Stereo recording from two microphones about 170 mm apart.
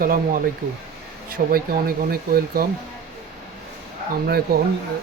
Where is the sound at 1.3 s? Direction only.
60° right (ahead or behind).